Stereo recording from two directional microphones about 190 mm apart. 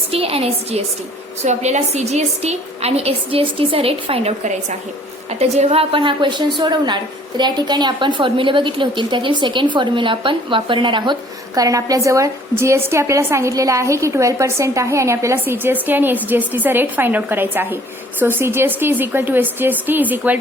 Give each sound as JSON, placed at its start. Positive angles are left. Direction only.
{"t": 0.1, "sound": "a woman's voice", "side_deg": -30}